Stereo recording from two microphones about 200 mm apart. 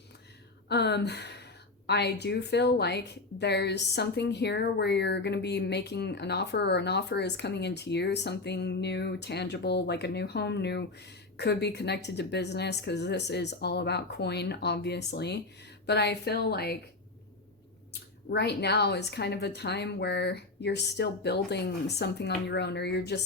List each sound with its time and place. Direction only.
0.7 s a woman's voice: 55° left (ahead or behind)
18.3 s a woman's voice: 55° left (ahead or behind)